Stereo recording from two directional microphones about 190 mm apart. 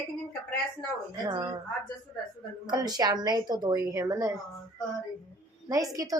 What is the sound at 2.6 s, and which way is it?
A woman's voice, 20° right (ahead or behind).